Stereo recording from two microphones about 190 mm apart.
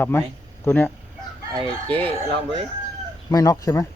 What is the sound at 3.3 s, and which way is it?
Speech, 20° left (ahead or behind).